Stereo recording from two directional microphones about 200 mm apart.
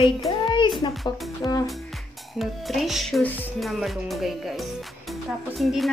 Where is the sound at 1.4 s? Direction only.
15° left (ahead or behind).